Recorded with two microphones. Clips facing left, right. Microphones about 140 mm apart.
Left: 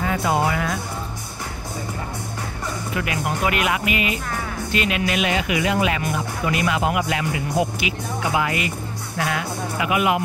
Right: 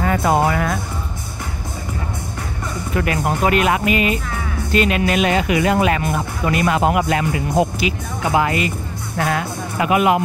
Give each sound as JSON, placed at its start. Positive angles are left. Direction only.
{"t": 0.0, "sound": "speech", "side_deg": -50}
{"t": 2.9, "sound": "speech", "side_deg": -45}